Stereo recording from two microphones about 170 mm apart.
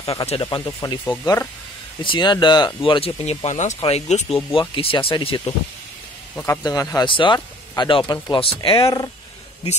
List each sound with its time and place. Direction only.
0.3 s speech: 30° left (ahead or behind)
0.7 s speech: 15° left (ahead or behind); by 5.5 s 30° left (ahead or behind)
6.3 s speech: 15° left (ahead or behind)